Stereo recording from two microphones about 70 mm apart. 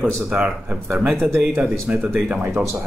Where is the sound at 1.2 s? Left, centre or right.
Right.